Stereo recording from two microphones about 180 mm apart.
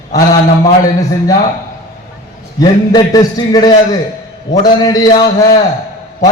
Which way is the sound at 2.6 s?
20° left (ahead or behind).